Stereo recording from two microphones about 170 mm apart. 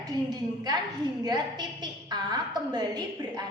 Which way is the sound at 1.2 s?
25° right (ahead or behind).